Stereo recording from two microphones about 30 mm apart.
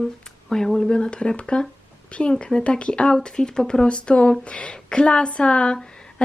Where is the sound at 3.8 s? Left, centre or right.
Left.